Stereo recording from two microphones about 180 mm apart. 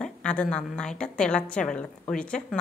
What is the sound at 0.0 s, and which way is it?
A woman's voice, 5° left (ahead or behind).